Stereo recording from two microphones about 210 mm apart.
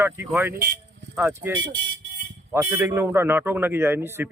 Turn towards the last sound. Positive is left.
turn(degrees=-10)  # may be behind; listen again after turning